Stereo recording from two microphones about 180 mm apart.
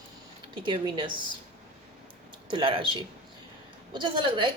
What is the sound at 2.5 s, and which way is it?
Speech, 30° right (ahead or behind).